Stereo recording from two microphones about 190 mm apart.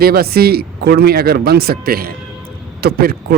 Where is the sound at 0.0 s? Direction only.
55° right (ahead or behind).